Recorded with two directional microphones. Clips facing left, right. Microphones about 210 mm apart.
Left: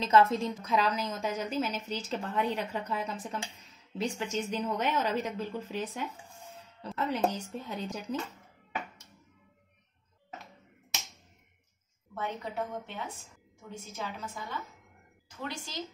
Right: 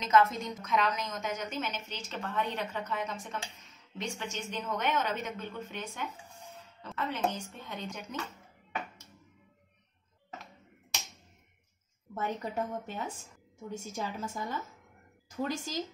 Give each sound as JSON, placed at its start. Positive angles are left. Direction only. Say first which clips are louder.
{"t": 0.0, "sound": "speech", "louder": "left 2 dB", "side_deg": 30}
{"t": 7.1, "sound": "speech", "louder": "left 3 dB", "side_deg": 35}
{"t": 12.1, "sound": "a woman's voice", "louder": "right 2 dB", "side_deg": -45}